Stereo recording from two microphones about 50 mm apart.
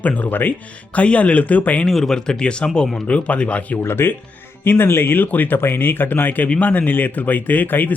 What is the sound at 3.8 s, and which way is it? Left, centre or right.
Speech, left.